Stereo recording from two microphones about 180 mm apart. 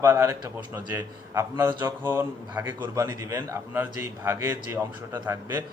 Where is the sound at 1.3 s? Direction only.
15° right (ahead or behind).